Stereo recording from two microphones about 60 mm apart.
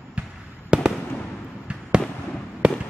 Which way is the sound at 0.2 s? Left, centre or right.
Right.